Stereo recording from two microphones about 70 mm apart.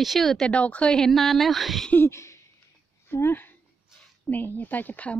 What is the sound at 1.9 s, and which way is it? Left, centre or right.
Speech, left.